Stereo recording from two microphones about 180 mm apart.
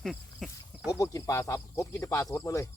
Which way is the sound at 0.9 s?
15° left (ahead or behind).